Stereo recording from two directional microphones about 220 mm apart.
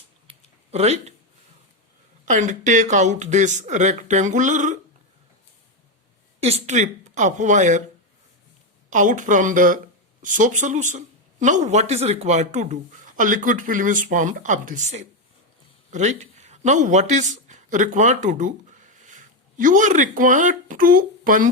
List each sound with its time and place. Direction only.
0.3 s a sound: 30° right (ahead or behind)
2.2 s speech: 35° right (ahead or behind)
6.4 s speech: 30° right (ahead or behind)
8.9 s speech: 35° right (ahead or behind)